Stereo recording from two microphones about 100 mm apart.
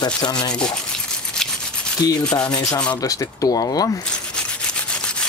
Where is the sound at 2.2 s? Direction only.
10° left (ahead or behind).